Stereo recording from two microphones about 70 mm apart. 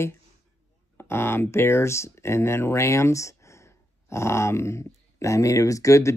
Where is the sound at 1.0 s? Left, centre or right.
Left.